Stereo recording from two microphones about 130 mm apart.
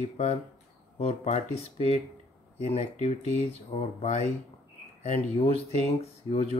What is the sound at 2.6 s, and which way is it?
A man's voice, 60° left (ahead or behind).